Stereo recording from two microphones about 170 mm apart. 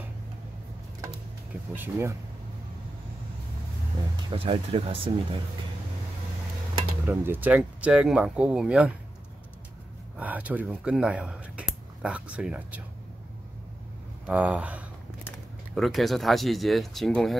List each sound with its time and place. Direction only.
1.8 s speech: 15° right (ahead or behind)
4.3 s speech: 35° right (ahead or behind)
7.1 s speech: 10° right (ahead or behind)
10.1 s speech: 10° right (ahead or behind)
14.2 s speech: 5° right (ahead or behind)